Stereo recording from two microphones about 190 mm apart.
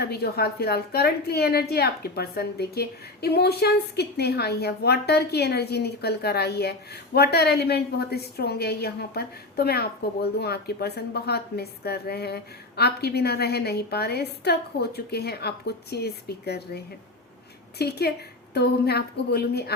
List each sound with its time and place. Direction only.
0.0 s a woman's voice: 55° left (ahead or behind)